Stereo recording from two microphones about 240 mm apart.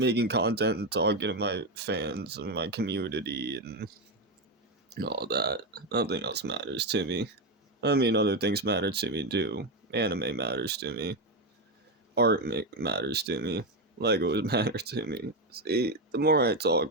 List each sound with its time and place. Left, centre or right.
0.0 s speech: right